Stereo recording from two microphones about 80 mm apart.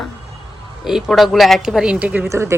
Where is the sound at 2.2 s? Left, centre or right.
Right.